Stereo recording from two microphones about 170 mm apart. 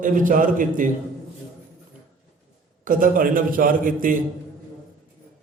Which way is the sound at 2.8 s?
55° right (ahead or behind).